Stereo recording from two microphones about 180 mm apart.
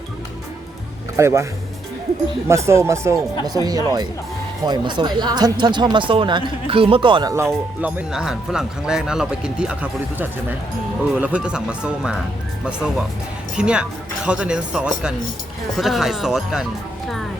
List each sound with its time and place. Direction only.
1.1 s speech: 15° right (ahead or behind)
2.5 s speech: 15° right (ahead or behind)
7.8 s speech: 10° right (ahead or behind)
13.6 s speech: 5° right (ahead or behind)